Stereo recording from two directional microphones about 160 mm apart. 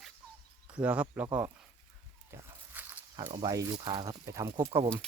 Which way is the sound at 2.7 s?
10° right (ahead or behind).